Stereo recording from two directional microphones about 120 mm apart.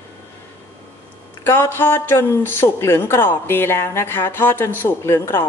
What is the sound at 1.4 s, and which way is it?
Speech, 20° left (ahead or behind).